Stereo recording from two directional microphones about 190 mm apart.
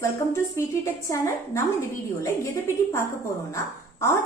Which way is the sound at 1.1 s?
15° left (ahead or behind).